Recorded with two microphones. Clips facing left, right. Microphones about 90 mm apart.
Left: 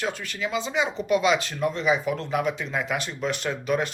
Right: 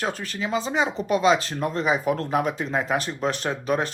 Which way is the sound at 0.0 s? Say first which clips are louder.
Right 1 dB; 35° right (ahead or behind).